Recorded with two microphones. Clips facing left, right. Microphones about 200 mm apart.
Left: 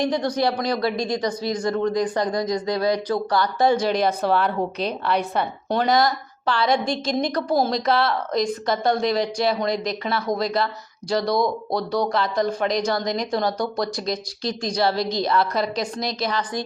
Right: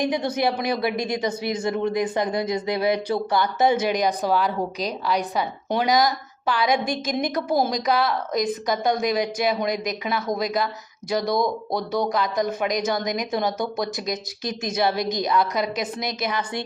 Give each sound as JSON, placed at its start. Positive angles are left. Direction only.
{"t": 0.0, "sound": "speech", "side_deg": -20}
{"t": 5.0, "sound": "a woman's voice", "side_deg": 0}
{"t": 5.6, "sound": "speech", "side_deg": -15}